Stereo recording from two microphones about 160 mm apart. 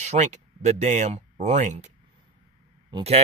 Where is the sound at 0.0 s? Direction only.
45° right (ahead or behind).